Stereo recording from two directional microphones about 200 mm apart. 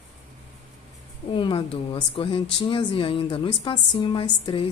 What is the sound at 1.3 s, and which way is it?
A woman's voice, 25° left (ahead or behind).